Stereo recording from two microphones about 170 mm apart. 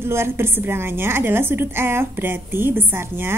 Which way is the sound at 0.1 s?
15° right (ahead or behind).